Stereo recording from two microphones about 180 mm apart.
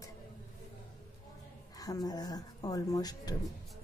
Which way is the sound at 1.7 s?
20° left (ahead or behind).